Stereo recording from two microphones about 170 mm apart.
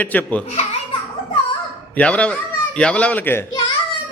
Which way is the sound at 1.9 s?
5° left (ahead or behind).